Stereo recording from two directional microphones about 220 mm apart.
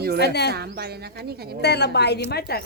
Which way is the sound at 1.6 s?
50° left (ahead or behind).